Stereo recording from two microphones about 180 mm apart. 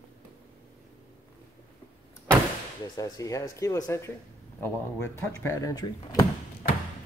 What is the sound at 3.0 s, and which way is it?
Speech, 20° left (ahead or behind).